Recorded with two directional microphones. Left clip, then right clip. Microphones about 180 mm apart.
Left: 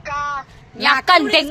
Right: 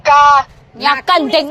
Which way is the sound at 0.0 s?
30° right (ahead or behind).